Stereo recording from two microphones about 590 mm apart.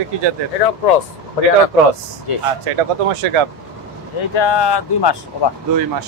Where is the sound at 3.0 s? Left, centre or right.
Right.